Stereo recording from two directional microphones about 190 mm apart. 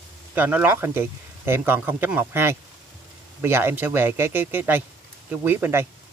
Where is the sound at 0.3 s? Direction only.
10° right (ahead or behind).